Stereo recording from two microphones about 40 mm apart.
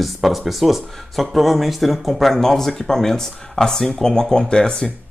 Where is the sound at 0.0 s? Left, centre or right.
Centre; by 4.9 s left.